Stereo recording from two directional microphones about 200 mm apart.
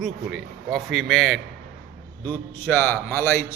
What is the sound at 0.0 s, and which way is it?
A man's voice, centre (ahead or behind).